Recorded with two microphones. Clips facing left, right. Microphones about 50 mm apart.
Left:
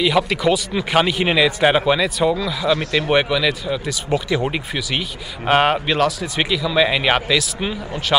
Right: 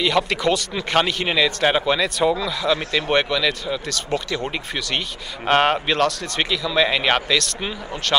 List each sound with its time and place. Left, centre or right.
0.0 s a man's voice: centre